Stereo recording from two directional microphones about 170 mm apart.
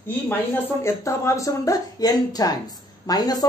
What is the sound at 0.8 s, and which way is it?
Speech, 15° left (ahead or behind).